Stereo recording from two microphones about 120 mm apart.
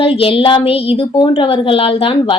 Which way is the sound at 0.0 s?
50° left (ahead or behind).